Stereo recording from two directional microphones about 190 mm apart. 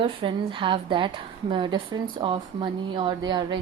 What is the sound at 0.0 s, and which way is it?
A woman's voice, 25° right (ahead or behind).